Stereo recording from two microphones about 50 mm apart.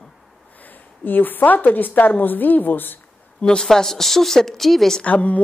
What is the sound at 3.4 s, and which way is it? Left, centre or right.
Speech, centre.